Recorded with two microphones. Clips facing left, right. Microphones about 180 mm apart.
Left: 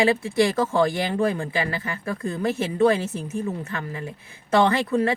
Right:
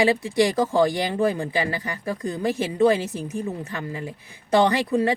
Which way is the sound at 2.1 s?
15° right (ahead or behind).